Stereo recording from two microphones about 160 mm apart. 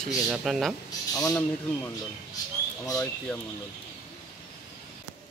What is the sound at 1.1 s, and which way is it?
Speech, 20° left (ahead or behind).